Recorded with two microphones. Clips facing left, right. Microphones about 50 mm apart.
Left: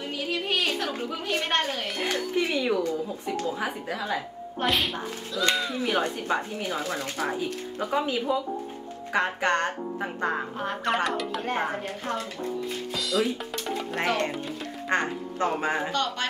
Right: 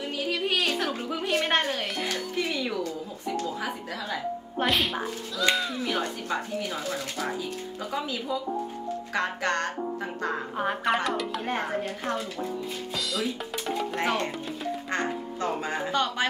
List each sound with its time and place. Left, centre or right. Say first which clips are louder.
0.3 s a sound: even; centre
2.0 s speech: left 7 dB; left
4.6 s speech: even; centre
5.8 s speech: left 3 dB; centre
9.1 s speech: left 4 dB; left
10.6 s music: right 3 dB; centre
11.1 s speech: even; centre
12.9 s drum: left 4 dB; centre
14.0 s speech: left 4 dB; centre
14.9 s speech: left 6 dB; left
15.9 s music: right 2 dB; centre